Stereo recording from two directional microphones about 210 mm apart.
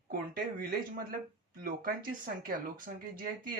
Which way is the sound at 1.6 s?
45° right (ahead or behind).